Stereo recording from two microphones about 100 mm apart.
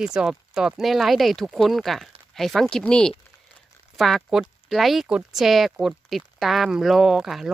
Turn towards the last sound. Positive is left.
turn(degrees=-5)  # may be behind; listen again after turning